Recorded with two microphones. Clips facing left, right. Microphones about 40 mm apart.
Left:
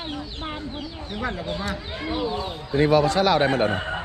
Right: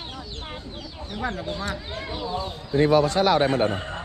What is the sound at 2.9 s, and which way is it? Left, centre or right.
Speech, left.